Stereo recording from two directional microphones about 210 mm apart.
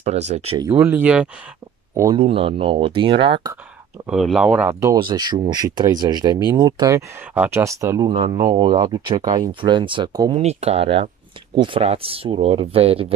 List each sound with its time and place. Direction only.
0.0 s speech: 30° right (ahead or behind)
0.6 s speech: 10° right (ahead or behind)
2.1 s speech: 25° right (ahead or behind)
4.0 s speech: centre (ahead or behind); by 10.4 s 20° right (ahead or behind)
10.4 s speech: 30° right (ahead or behind)